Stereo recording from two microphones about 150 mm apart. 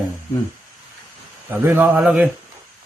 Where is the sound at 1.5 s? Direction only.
15° right (ahead or behind).